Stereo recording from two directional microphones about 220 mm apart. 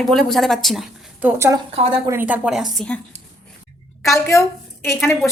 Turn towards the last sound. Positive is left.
turn(degrees=10)  # may be behind; listen again after turning